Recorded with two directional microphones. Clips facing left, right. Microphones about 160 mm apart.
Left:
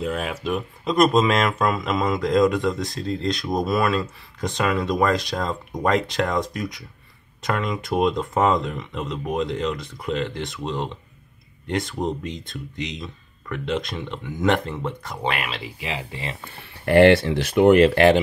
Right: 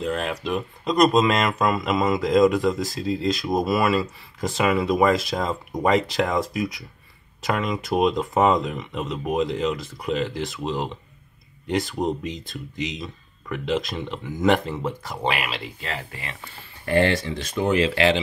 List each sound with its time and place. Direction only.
0.0 s speech: 5° left (ahead or behind)
15.8 s speech: 15° left (ahead or behind)
16.4 s speech: 65° left (ahead or behind)